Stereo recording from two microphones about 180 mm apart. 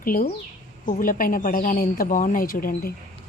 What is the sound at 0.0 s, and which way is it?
A woman's voice, 50° left (ahead or behind).